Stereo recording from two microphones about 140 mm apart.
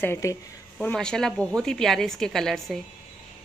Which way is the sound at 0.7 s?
5° left (ahead or behind).